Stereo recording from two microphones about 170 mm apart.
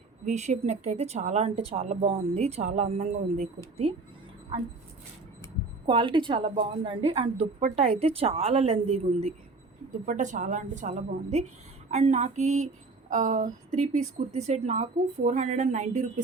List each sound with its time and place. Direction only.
0.3 s a woman's voice: 40° right (ahead or behind)
5.8 s a woman's voice: 30° right (ahead or behind); by 16.2 s 45° right (ahead or behind)